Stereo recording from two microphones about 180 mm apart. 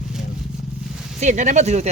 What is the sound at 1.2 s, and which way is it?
Speech, 40° right (ahead or behind).